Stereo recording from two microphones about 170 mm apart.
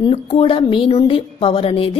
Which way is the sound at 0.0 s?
35° left (ahead or behind).